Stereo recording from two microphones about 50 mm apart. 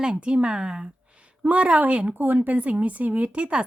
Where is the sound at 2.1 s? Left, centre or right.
Right.